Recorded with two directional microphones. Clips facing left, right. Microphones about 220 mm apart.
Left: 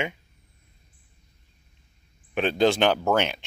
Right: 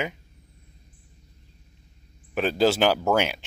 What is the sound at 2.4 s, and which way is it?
Speech, 5° right (ahead or behind).